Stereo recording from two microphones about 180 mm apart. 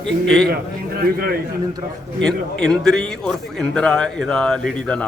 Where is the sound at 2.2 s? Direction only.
5° left (ahead or behind).